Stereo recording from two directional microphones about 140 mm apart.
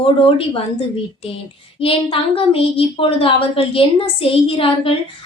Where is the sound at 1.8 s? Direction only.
40° left (ahead or behind).